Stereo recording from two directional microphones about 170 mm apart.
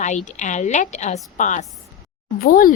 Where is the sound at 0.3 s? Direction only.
45° left (ahead or behind).